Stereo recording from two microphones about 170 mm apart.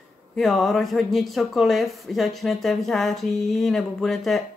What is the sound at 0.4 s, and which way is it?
Speech, centre (ahead or behind).